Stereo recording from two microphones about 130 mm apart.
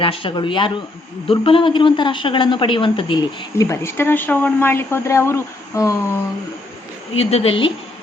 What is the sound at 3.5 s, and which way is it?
Speech, 25° left (ahead or behind).